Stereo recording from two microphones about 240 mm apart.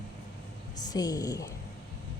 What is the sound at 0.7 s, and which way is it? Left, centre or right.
Speech, centre.